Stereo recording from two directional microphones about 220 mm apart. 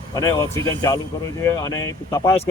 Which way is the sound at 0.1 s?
15° left (ahead or behind).